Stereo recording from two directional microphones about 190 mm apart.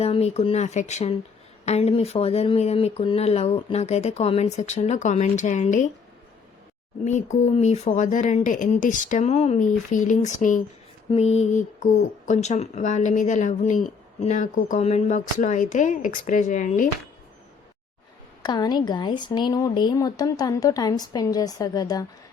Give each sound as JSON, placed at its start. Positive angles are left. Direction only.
{"t": 0.0, "sound": "speech", "side_deg": 30}
{"t": 7.0, "sound": "speech", "side_deg": 40}
{"t": 18.4, "sound": "speech", "side_deg": 20}